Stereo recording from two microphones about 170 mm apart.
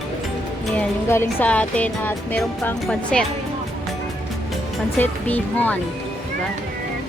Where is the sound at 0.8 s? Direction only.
15° left (ahead or behind).